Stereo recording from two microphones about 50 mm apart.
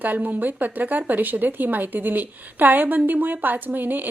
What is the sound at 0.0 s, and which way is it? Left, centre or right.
Speech, right.